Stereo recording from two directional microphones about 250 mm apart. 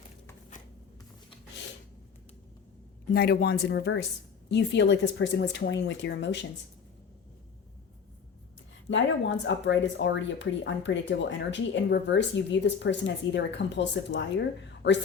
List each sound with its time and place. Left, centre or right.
3.1 s speech: left
8.9 s speech: left
14.7 s a sound: left